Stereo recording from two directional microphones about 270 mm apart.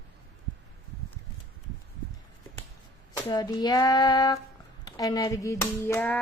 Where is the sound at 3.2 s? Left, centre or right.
Centre.